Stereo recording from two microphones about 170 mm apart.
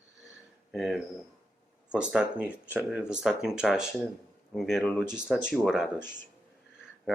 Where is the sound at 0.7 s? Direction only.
Centre (ahead or behind).